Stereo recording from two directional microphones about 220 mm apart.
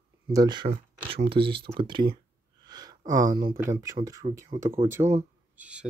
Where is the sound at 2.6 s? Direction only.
20° right (ahead or behind).